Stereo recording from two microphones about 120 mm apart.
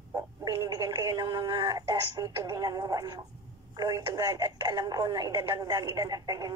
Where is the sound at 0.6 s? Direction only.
35° right (ahead or behind).